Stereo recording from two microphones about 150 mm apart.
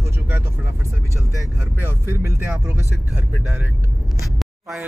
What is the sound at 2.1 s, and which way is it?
Speech, 15° right (ahead or behind).